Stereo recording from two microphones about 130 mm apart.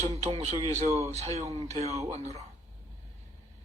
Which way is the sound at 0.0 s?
50° right (ahead or behind).